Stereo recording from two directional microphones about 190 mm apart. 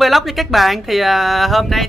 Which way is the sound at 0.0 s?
Centre (ahead or behind).